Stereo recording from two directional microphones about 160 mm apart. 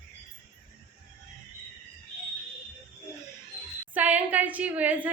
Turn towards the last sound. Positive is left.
turn(degrees=-10)  # may be behind; listen again after turning